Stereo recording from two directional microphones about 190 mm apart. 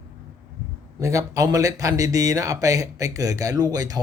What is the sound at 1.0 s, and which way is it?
Speech, 15° right (ahead or behind).